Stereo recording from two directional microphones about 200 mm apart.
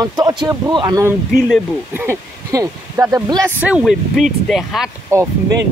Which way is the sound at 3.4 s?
5° right (ahead or behind).